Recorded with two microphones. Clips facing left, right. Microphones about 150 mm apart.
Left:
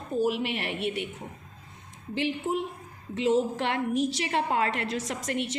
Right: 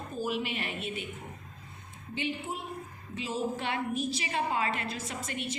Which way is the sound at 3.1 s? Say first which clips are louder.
Left 8 dB; 80° left.